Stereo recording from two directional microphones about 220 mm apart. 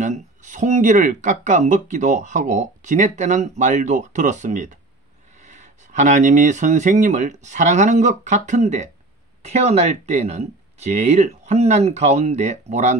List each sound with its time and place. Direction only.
0.0 s speech: 35° right (ahead or behind)